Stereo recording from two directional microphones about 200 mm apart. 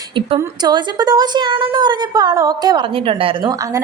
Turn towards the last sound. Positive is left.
turn(degrees=-25)  # may be behind; listen again after turning